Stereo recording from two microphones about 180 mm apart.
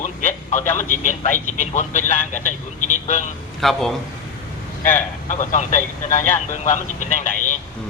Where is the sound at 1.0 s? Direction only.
45° left (ahead or behind).